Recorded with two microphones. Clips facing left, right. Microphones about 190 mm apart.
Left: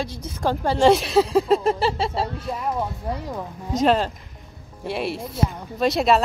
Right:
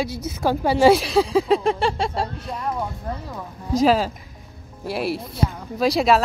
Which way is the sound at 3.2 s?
20° left (ahead or behind).